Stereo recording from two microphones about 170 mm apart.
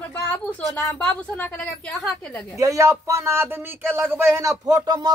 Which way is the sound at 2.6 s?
20° right (ahead or behind).